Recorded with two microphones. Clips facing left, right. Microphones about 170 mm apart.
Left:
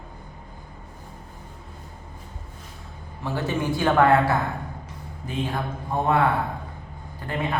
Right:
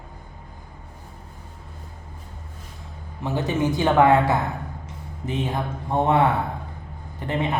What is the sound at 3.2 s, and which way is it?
Speech, 20° right (ahead or behind).